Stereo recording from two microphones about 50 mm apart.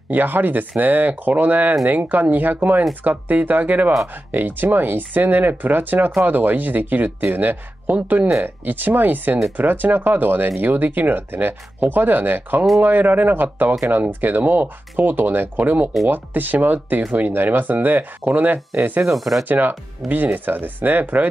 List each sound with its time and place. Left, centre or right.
0.1 s speech: right
17.3 s speech: right
19.1 s speech: centre
19.4 s speech: right
20.0 s speech: centre
20.3 s speech: right